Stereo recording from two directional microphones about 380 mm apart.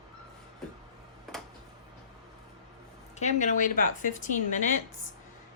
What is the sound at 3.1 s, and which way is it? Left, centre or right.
A woman's voice, centre.